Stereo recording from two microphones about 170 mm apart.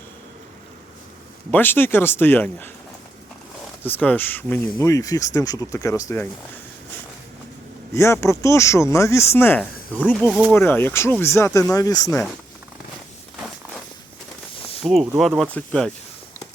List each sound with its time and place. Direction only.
1.5 s speech: 10° left (ahead or behind)
3.8 s speech: 10° left (ahead or behind)
7.9 s speech: 15° left (ahead or behind)
14.8 s speech: centre (ahead or behind)